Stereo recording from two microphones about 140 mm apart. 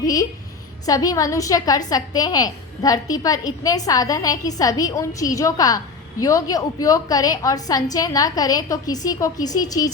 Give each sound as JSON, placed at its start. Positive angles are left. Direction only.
{"t": 0.0, "sound": "a woman's voice", "side_deg": 25}